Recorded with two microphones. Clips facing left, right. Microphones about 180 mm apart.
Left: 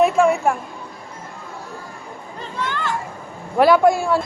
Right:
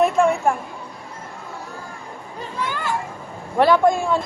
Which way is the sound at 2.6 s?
10° right (ahead or behind).